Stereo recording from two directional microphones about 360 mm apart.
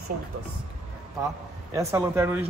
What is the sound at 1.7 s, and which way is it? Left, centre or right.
Speech, centre.